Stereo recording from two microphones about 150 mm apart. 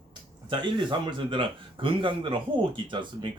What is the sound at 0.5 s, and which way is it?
Speech, 30° right (ahead or behind).